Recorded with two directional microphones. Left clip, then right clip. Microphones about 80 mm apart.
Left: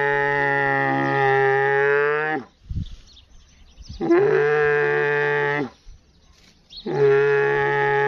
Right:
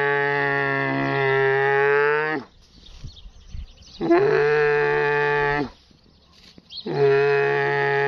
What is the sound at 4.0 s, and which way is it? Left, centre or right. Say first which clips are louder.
Livestock: even; centre.